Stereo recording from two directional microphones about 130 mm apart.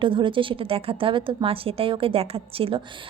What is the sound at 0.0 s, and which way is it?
A woman's voice, 40° right (ahead or behind).